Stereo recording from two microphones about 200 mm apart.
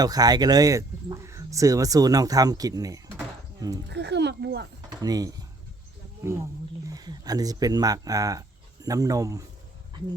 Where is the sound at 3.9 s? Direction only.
60° right (ahead or behind).